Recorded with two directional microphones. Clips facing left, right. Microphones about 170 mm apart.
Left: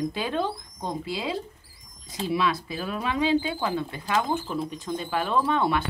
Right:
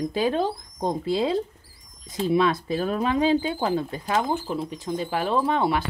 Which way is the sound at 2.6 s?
45° right (ahead or behind).